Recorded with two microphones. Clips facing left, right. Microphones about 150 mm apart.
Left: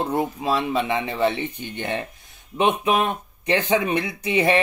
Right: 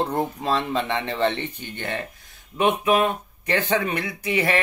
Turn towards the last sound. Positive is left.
turn(degrees=20)  # may be behind; listen again after turning